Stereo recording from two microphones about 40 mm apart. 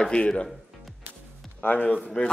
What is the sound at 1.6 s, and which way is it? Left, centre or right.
Speech, left.